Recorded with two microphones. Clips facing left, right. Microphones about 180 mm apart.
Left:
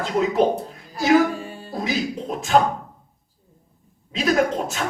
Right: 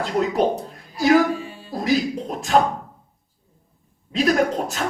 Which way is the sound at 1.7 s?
Centre (ahead or behind).